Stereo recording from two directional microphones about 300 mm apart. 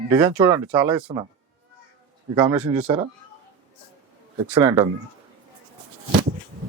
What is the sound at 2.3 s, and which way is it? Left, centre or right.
Speech, centre.